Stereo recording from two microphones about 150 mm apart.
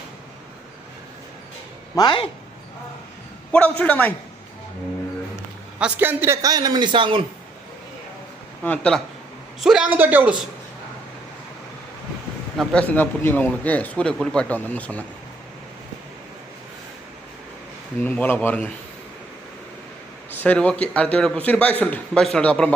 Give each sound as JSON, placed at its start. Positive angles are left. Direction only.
{"t": 2.0, "sound": "speech", "side_deg": 30}
{"t": 3.5, "sound": "speech", "side_deg": 10}
{"t": 5.8, "sound": "a man's voice", "side_deg": -15}
{"t": 8.6, "sound": "speech", "side_deg": 10}
{"t": 9.6, "sound": "a man's voice", "side_deg": 0}
{"t": 12.5, "sound": "speech", "side_deg": 10}
{"t": 18.0, "sound": "speech", "side_deg": 10}
{"t": 20.3, "sound": "speech", "side_deg": 10}